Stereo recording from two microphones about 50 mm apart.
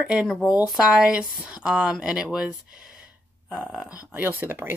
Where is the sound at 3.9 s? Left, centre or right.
Right.